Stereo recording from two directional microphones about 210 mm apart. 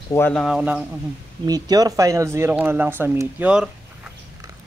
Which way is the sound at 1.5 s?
20° right (ahead or behind).